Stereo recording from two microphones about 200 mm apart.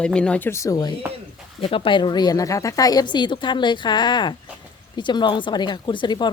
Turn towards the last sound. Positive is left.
turn(degrees=25)  # may be behind; listen again after turning